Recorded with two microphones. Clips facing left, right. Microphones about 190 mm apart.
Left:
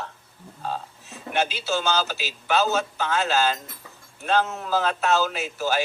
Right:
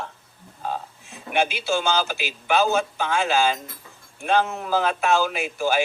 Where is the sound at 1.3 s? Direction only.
15° right (ahead or behind).